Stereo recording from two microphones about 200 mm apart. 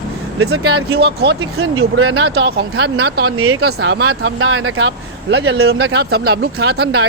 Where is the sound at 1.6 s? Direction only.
80° right; by 3.3 s 55° right (ahead or behind).